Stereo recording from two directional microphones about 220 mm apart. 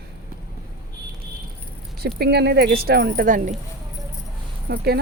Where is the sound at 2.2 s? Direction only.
50° right (ahead or behind).